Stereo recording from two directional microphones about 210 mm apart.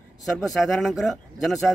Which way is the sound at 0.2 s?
Centre (ahead or behind).